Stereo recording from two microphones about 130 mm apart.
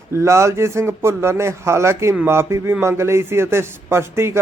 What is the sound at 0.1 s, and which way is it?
A man's voice, 20° right (ahead or behind).